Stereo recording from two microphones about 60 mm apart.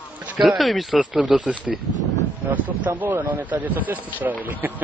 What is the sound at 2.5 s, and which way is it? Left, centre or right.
Speech, right.